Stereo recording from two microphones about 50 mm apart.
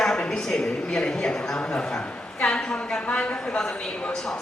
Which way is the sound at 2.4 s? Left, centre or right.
Centre.